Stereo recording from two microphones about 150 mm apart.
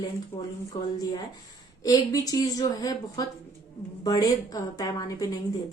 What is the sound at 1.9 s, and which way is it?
A woman's voice, 25° left (ahead or behind).